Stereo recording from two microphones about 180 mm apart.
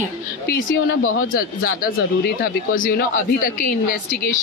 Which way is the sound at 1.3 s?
55° left (ahead or behind).